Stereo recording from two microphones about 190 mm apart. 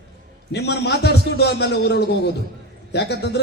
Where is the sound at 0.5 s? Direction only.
60° left (ahead or behind).